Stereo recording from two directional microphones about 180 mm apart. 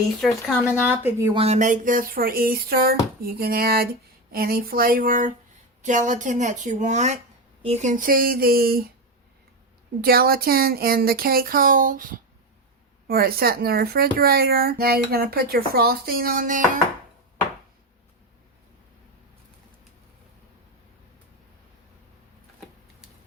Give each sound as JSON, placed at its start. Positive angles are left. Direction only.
{"t": 0.2, "sound": "speech", "side_deg": 0}
{"t": 0.9, "sound": "speech", "side_deg": -10}
{"t": 1.3, "sound": "speech", "side_deg": -35}
{"t": 10.0, "sound": "speech", "side_deg": -55}